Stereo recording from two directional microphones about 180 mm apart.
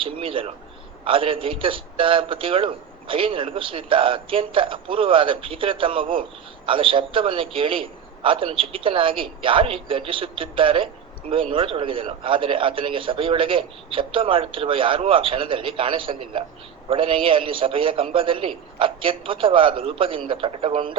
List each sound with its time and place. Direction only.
0.0 s a man's voice: 30° right (ahead or behind)